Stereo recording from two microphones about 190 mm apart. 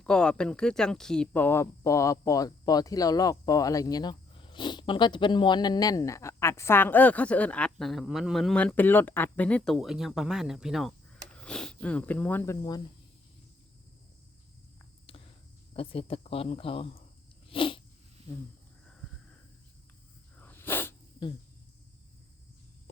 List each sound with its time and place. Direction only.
0.0 s speech: 5° left (ahead or behind)
15.7 s speech: 30° left (ahead or behind)
17.5 s sneeze: 25° left (ahead or behind)
20.4 s a sound: 10° left (ahead or behind)